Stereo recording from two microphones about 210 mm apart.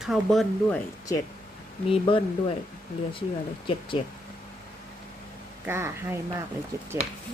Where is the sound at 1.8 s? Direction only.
25° left (ahead or behind).